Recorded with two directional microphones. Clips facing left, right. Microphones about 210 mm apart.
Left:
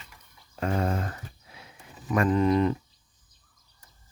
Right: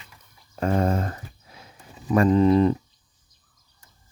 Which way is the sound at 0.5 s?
40° right (ahead or behind).